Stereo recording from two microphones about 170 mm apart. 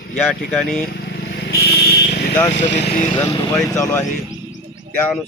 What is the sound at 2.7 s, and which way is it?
Speech, 90° left.